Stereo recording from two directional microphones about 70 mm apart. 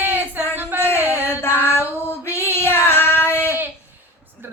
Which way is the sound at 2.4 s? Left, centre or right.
Left.